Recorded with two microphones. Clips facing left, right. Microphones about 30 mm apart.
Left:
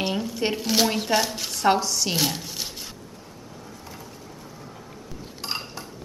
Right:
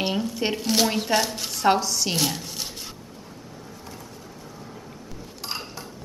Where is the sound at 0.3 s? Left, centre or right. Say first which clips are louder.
Even; centre.